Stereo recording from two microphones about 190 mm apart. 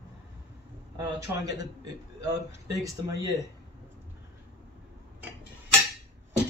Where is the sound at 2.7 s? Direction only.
15° right (ahead or behind).